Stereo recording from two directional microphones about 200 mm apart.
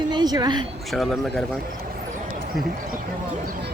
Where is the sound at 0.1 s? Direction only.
20° right (ahead or behind).